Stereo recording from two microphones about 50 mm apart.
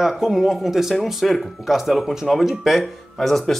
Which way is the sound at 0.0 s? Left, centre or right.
Centre.